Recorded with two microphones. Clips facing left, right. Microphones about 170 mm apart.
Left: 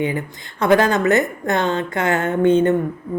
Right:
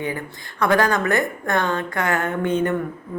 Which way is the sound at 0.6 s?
20° left (ahead or behind).